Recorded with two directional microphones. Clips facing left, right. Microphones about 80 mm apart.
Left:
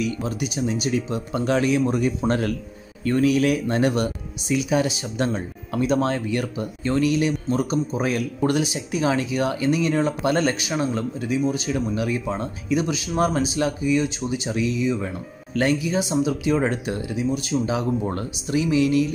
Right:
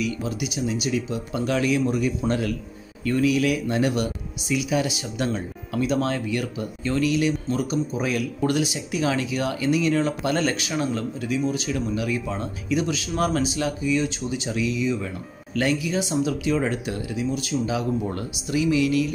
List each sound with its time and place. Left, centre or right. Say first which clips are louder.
0.0 s speech: left 1 dB; left